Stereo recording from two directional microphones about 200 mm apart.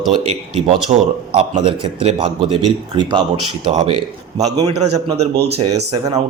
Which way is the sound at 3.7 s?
35° right (ahead or behind).